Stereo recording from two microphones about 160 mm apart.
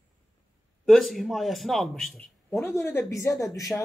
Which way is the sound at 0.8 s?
Centre (ahead or behind).